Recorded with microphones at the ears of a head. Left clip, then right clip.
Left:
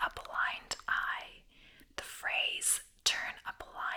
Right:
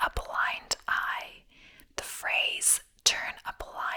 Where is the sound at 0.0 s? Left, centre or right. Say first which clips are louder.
Right 5 dB; right.